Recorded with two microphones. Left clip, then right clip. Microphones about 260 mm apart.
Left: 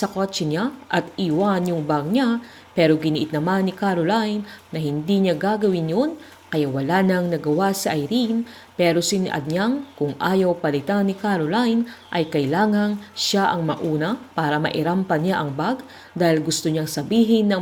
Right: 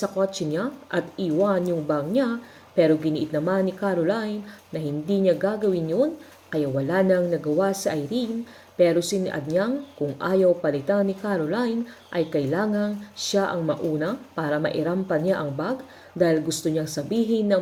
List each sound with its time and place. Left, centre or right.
0.0 s speech: centre